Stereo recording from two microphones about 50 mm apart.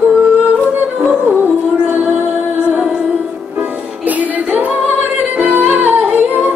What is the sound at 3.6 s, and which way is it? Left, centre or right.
Music, right.